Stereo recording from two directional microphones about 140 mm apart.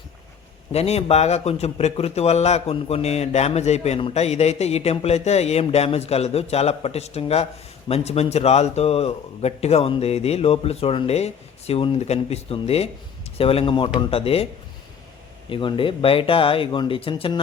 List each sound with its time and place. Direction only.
0.7 s speech: 45° left (ahead or behind)
15.4 s speech: 40° left (ahead or behind)